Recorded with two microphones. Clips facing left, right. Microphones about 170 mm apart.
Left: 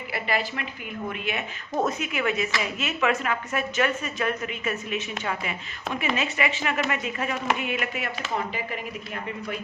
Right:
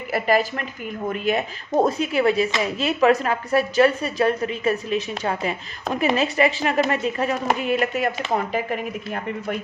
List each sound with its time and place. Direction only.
0.1 s a woman's voice: 45° right (ahead or behind)
8.2 s speech: 50° right (ahead or behind)